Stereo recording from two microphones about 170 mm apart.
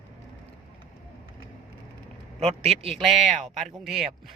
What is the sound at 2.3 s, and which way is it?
Speech, 35° right (ahead or behind).